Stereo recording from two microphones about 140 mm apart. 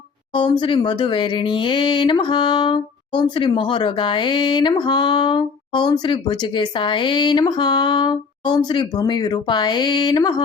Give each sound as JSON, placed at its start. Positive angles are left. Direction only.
{"t": 0.3, "sound": "speech", "side_deg": 35}